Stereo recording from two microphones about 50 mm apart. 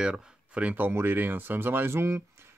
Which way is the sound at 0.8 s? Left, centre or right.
Right.